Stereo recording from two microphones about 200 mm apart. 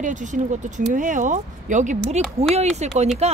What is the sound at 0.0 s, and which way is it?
Speech, 40° right (ahead or behind).